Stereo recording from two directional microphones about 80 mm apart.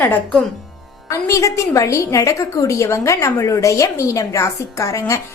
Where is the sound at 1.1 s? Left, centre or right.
Left.